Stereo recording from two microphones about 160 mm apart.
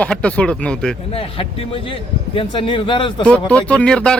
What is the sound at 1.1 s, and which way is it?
A man's voice, 35° left (ahead or behind).